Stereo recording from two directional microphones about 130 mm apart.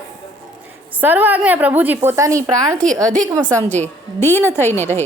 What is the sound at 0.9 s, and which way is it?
A woman's voice, 15° right (ahead or behind).